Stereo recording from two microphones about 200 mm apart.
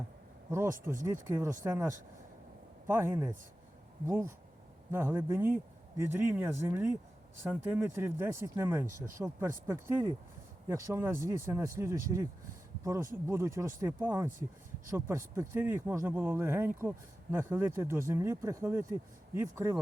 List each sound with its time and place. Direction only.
1.0 s speech: 15° right (ahead or behind)
4.9 s speech: 10° right (ahead or behind)